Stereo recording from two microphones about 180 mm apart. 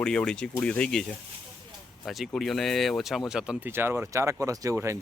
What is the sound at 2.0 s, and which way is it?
Speech, centre (ahead or behind).